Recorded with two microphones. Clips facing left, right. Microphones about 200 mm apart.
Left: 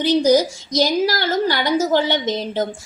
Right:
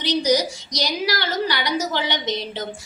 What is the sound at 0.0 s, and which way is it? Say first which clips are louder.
A woman's voice: left 5 dB; 50° left (ahead or behind).